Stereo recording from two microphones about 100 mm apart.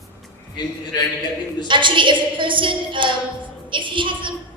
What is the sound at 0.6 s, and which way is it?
Speech, 50° left (ahead or behind).